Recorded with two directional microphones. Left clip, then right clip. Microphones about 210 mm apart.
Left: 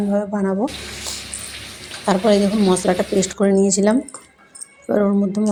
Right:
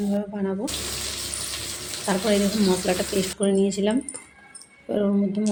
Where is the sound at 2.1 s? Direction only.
25° left (ahead or behind).